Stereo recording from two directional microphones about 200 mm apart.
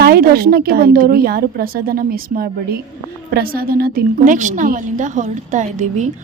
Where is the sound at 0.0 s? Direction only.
50° right (ahead or behind).